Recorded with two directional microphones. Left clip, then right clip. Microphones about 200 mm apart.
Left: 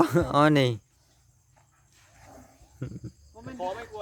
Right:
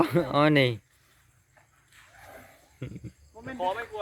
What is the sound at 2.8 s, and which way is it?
Speech, 10° left (ahead or behind).